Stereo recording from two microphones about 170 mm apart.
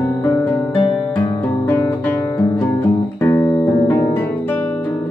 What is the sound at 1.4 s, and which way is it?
Guitar, 10° left (ahead or behind).